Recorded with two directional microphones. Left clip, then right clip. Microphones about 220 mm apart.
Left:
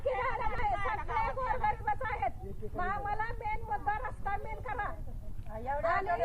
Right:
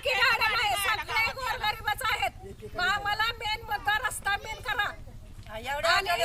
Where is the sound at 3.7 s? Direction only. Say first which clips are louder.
Right 7 dB; 40° right (ahead or behind).